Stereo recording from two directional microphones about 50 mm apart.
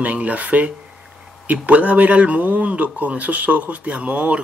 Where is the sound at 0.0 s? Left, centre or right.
Right.